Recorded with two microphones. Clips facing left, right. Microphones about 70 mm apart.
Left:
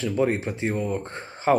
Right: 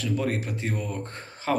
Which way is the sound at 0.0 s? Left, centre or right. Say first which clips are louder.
Left 4 dB; left.